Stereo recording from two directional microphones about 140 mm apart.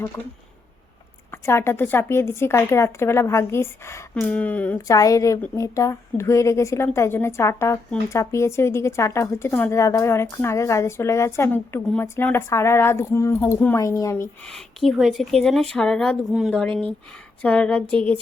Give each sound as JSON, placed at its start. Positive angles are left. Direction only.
{"t": 1.3, "sound": "a woman's voice", "side_deg": 20}
{"t": 4.9, "sound": "a woman's voice", "side_deg": 25}
{"t": 14.4, "sound": "a woman's voice", "side_deg": 5}